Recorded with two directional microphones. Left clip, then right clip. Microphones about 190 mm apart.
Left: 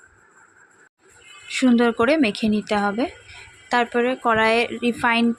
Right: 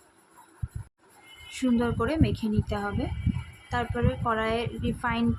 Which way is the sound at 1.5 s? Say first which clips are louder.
Left 9 dB; 25° left (ahead or behind).